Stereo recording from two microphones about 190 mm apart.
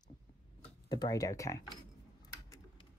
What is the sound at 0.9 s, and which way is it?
Speech, 20° left (ahead or behind).